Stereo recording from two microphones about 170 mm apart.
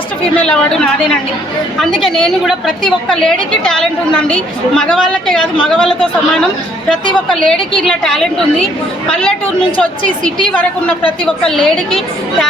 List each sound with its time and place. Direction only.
0.3 s a woman's voice: 5° left (ahead or behind)
7.3 s a woman's voice: 5° left (ahead or behind)
10.5 s a woman's voice: 10° left (ahead or behind)